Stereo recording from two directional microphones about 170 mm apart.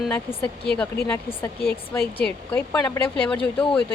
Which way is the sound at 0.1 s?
10° left (ahead or behind).